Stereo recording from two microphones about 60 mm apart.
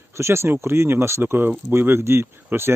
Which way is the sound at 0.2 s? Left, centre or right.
Right.